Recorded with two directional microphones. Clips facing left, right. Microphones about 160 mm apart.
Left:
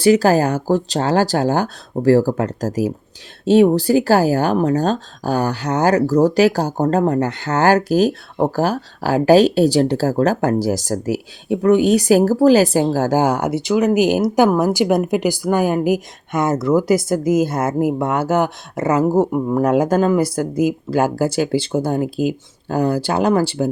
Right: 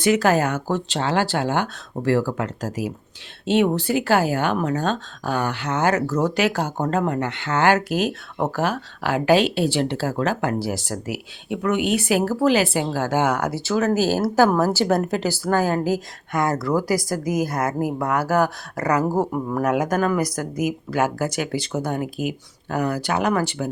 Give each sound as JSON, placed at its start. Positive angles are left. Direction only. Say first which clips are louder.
{"t": 0.0, "sound": "speech", "louder": "left 5 dB", "side_deg": 35}